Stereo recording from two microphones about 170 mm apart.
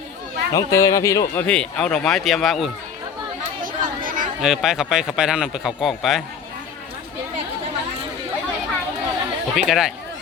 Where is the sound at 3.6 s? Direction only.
55° right (ahead or behind).